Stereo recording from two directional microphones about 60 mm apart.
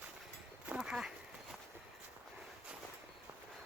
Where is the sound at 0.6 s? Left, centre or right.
Centre.